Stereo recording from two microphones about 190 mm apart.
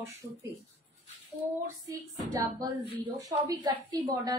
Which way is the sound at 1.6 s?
20° right (ahead or behind).